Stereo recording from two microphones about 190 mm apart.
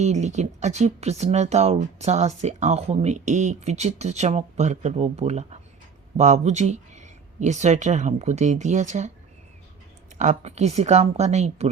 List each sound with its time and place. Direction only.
0.0 s speech: 40° right (ahead or behind)
10.2 s speech: 40° right (ahead or behind)